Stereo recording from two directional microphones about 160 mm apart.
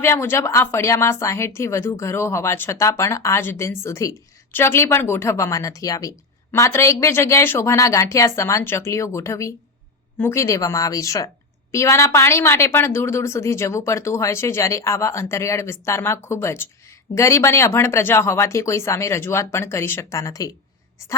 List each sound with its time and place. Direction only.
0.0 s a woman's voice: 15° left (ahead or behind)